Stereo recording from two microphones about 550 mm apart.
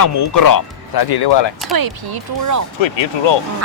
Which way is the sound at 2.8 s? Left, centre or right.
Left.